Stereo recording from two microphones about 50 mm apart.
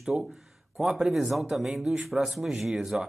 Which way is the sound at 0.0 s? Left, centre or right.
Centre.